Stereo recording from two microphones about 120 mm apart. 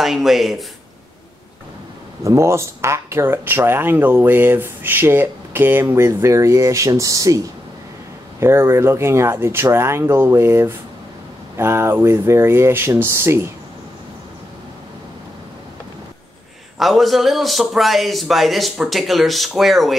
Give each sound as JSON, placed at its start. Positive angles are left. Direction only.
{"t": 0.0, "sound": "a man's voice", "side_deg": 0}
{"t": 2.2, "sound": "speech", "side_deg": -25}
{"t": 16.7, "sound": "a man's voice", "side_deg": 0}